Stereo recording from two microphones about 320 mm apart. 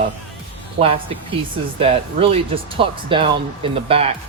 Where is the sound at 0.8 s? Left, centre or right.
Centre.